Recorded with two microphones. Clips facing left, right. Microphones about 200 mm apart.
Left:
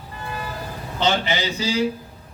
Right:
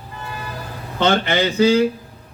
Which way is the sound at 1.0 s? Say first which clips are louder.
Right 5 dB; 55° right (ahead or behind).